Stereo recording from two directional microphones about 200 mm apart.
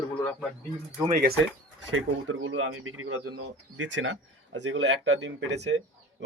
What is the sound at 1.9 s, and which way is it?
Speech, 85° right.